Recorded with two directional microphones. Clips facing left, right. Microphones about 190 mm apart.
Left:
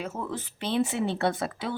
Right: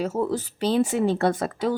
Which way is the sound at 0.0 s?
40° right (ahead or behind).